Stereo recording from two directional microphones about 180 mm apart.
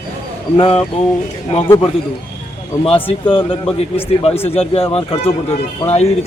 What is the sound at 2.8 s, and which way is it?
Speech, 30° left (ahead or behind).